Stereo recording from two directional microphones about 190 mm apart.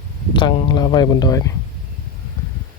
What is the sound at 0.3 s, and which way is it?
Speech, 25° left (ahead or behind).